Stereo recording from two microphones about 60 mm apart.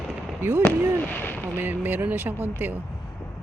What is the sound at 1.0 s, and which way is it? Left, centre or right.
Speech, left.